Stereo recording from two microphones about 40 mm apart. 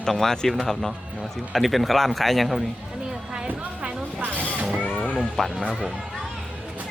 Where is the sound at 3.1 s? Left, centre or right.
Centre.